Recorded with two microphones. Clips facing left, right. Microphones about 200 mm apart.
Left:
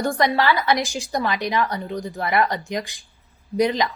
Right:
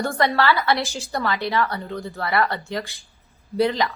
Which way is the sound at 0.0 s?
15° left (ahead or behind).